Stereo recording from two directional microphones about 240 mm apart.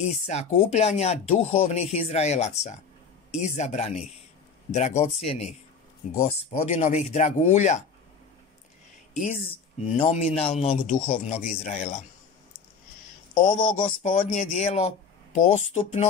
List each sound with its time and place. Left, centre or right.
0.0 s speech: left
9.1 s speech: left
13.6 s speech: left